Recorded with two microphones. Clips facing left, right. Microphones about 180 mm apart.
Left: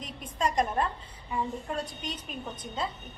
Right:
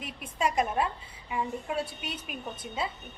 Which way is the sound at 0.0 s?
5° right (ahead or behind).